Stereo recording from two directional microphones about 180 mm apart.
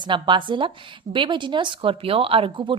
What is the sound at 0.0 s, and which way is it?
A woman's voice, 25° right (ahead or behind).